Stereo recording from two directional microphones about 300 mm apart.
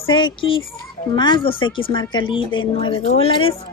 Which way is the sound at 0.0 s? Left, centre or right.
Centre.